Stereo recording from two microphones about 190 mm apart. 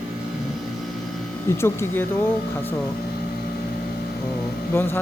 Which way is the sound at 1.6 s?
10° left (ahead or behind).